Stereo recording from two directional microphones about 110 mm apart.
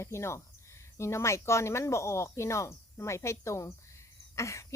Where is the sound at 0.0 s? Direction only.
25° left (ahead or behind).